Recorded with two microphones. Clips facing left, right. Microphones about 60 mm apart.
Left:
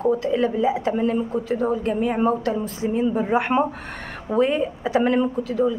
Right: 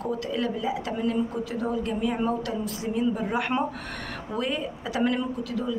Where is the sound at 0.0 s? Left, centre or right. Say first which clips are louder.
Left 8 dB; left.